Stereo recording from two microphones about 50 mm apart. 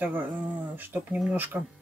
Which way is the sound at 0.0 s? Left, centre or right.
Right.